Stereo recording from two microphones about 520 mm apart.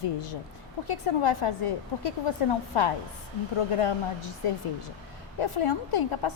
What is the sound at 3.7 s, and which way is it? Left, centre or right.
A woman's voice, left.